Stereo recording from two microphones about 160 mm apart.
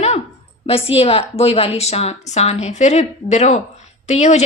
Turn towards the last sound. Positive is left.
turn(degrees=45)  # may be behind; listen again after turning